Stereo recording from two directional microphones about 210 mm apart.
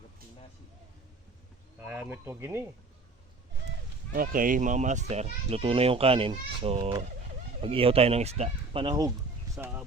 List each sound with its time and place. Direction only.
1.8 s speech: 10° right (ahead or behind)
4.1 s a child's voice: 45° right (ahead or behind); by 9.1 s 20° right (ahead or behind)
9.6 s speech: 5° right (ahead or behind)